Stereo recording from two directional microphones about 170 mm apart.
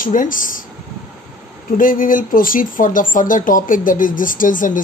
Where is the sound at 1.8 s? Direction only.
55° left (ahead or behind).